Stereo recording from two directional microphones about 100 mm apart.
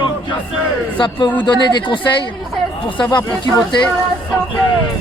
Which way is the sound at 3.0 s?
40° left (ahead or behind).